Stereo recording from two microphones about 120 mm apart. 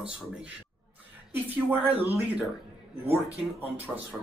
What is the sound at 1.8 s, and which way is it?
Speech, 55° right (ahead or behind).